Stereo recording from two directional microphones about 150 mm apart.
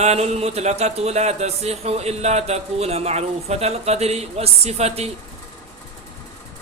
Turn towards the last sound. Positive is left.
turn(degrees=-45)  # may be behind; listen again after turning